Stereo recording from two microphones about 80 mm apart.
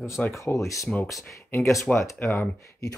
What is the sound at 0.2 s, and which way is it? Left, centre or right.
Speech, centre.